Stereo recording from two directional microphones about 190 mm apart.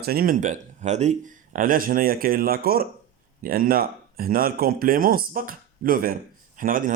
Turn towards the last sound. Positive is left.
turn(degrees=-45)  # may be behind; listen again after turning